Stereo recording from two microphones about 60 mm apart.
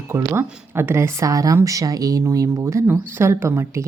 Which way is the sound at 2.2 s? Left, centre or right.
Right.